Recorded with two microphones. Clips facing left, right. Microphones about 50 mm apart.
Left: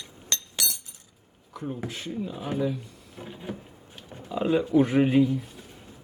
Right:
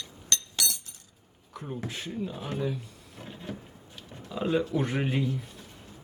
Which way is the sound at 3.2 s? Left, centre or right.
Centre.